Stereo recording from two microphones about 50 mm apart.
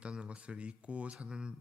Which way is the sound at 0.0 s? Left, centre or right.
Right.